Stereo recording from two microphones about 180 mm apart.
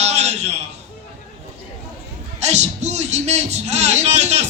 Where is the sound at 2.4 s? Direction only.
40° right (ahead or behind).